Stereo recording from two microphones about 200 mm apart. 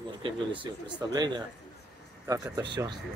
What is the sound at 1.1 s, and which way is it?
A man's voice, 20° right (ahead or behind).